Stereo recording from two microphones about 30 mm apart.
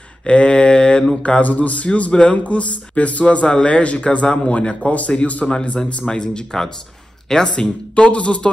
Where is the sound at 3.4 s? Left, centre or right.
Left.